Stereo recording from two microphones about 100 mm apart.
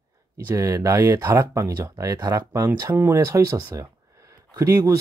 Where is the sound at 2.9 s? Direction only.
20° right (ahead or behind).